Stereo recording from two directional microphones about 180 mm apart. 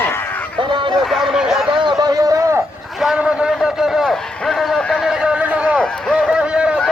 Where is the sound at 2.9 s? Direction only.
5° right (ahead or behind).